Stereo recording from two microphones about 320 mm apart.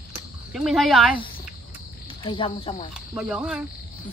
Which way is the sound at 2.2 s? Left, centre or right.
Centre.